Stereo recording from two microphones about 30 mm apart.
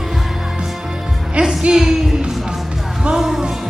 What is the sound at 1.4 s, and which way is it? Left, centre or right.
Music, right.